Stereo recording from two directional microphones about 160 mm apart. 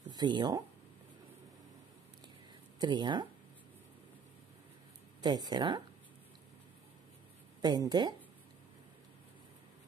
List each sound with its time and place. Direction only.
0.1 s speech: 25° right (ahead or behind)
2.8 s speech: 30° right (ahead or behind)
5.2 s speech: 25° right (ahead or behind)
7.6 s speech: 25° right (ahead or behind)